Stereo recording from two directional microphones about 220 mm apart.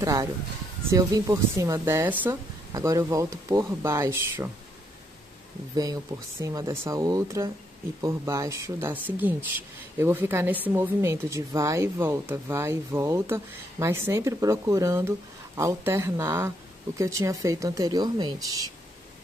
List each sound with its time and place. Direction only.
0.0 s speech: 15° right (ahead or behind)
6.4 s speech: 15° right (ahead or behind)